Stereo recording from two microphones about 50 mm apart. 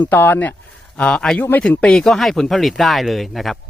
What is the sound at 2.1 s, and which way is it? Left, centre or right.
Speech, centre.